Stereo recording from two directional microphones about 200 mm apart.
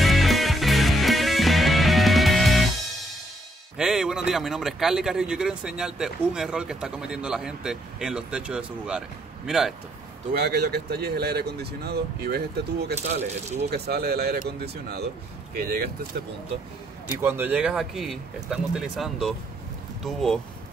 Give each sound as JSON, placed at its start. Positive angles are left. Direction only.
{"t": 0.0, "sound": "music", "side_deg": 0}
{"t": 3.7, "sound": "speech", "side_deg": -5}
{"t": 10.3, "sound": "speech", "side_deg": -55}
{"t": 12.9, "sound": "speech", "side_deg": -35}
{"t": 13.8, "sound": "speech", "side_deg": -55}
{"t": 17.1, "sound": "speech", "side_deg": -10}